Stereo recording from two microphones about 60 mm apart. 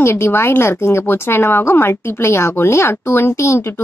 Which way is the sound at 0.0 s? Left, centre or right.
Left.